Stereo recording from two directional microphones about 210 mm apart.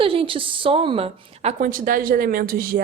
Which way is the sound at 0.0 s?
25° right (ahead or behind).